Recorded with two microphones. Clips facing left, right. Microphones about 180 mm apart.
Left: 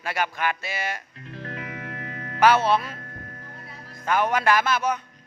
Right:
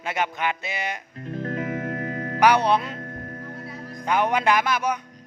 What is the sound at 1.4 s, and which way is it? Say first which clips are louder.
Music: right 8 dB; 40° right (ahead or behind).